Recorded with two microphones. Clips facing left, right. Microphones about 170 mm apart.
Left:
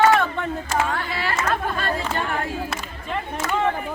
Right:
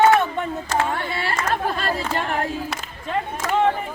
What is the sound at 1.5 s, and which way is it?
Chatter, 30° right (ahead or behind).